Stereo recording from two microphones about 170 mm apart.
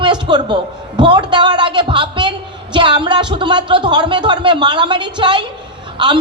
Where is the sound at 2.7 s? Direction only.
30° right (ahead or behind).